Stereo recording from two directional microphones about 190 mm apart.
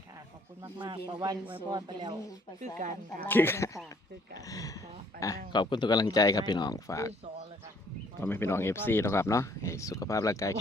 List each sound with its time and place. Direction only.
0.6 s speech: 25° right (ahead or behind)
2.7 s speech: 40° right (ahead or behind)
3.2 s speech: 10° left (ahead or behind)
8.2 s speech: 10° left (ahead or behind)